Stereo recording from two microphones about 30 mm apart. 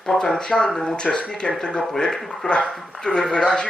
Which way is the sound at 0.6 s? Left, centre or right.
Centre.